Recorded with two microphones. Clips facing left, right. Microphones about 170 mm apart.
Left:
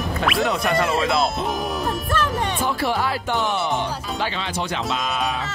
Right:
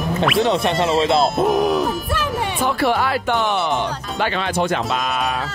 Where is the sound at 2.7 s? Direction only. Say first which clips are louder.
Right 7 dB; 65° right (ahead or behind).